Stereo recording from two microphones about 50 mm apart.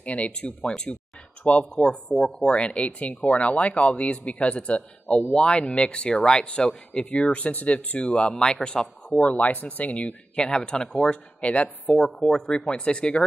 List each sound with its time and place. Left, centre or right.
0.0 s speech: left
1.8 s speech: centre
10.3 s speech: centre
11.4 s speech: left